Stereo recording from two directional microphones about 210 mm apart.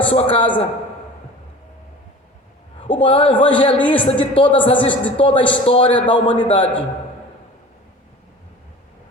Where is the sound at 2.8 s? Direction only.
25° left (ahead or behind).